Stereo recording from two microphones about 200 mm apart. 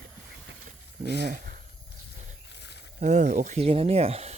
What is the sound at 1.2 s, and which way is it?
Speech, 50° right (ahead or behind).